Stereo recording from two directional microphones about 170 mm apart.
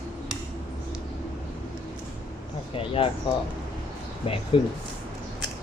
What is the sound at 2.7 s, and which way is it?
Speech, 35° left (ahead or behind).